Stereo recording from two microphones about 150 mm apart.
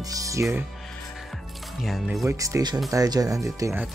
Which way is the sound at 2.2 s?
20° right (ahead or behind).